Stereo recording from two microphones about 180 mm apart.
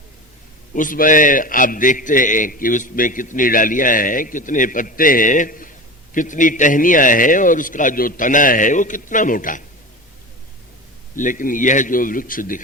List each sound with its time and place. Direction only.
0.7 s a man's voice: 50° left (ahead or behind)
11.1 s a man's voice: 45° left (ahead or behind)